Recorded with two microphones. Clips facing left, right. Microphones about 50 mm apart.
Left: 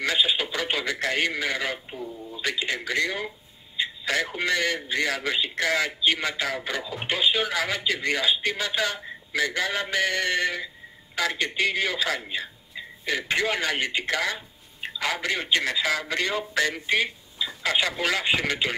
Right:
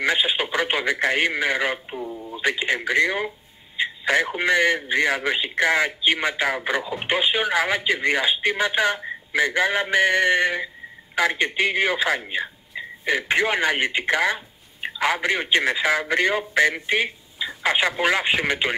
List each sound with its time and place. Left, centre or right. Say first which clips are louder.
0.0 s a man's voice: right 3 dB; right